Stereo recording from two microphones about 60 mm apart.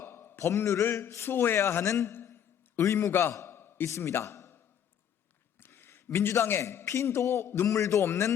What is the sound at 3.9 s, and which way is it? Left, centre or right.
Speech, left.